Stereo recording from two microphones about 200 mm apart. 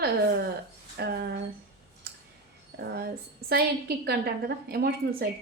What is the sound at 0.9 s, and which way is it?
Speech, 55° right (ahead or behind).